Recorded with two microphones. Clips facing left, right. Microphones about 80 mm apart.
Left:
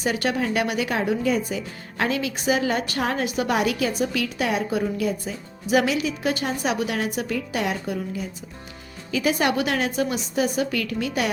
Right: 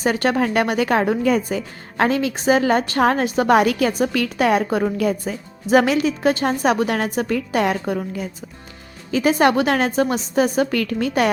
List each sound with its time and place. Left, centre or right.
0.0 s speech: right
3.5 s a woman's voice: right